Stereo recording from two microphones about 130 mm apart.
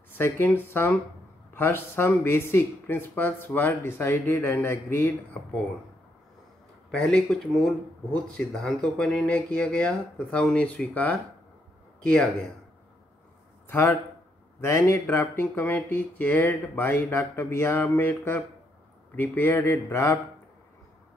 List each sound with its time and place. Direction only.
0.2 s speech: 15° left (ahead or behind)
6.9 s speech: 5° left (ahead or behind)
13.7 s a man's voice: 15° left (ahead or behind)